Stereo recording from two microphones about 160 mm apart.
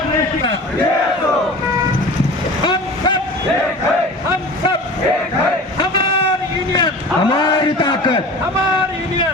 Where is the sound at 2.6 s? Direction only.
30° left (ahead or behind).